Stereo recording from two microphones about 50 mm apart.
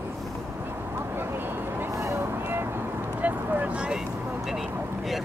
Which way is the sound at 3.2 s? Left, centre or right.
Right.